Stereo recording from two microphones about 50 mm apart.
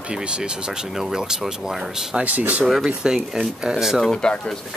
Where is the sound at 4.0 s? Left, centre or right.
Centre.